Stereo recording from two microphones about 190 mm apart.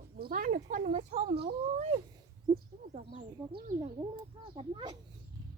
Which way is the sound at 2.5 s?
15° right (ahead or behind).